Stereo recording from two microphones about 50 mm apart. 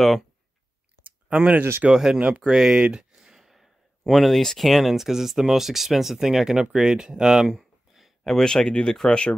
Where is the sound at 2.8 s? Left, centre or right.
Right.